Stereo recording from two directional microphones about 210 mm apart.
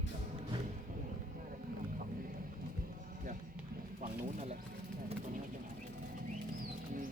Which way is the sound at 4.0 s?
40° right (ahead or behind).